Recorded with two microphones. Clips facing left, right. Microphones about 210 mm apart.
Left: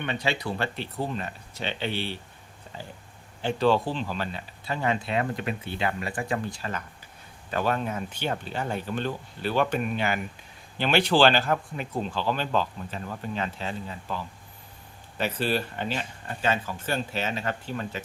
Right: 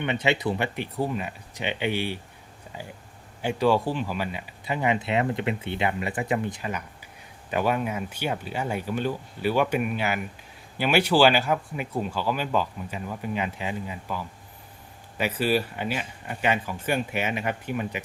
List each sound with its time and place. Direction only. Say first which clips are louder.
0.0 s speech: right 4 dB; 20° right (ahead or behind)